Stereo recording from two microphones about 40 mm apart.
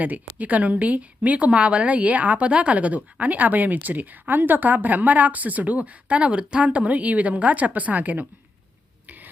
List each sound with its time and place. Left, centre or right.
0.0 s speech: right
2.5 s speech: right
9.0 s a sound: right